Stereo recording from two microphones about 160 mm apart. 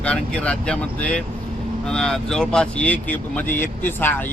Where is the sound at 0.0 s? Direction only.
10° left (ahead or behind).